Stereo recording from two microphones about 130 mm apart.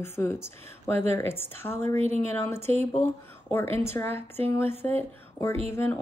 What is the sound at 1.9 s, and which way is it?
Speech, 55° right (ahead or behind).